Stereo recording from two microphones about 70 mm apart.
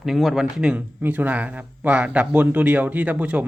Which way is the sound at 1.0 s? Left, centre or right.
Right.